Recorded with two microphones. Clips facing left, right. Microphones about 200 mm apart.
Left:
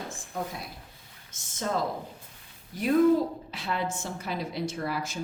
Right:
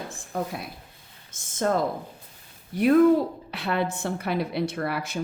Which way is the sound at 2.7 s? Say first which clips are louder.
Right 4 dB; 65° right (ahead or behind).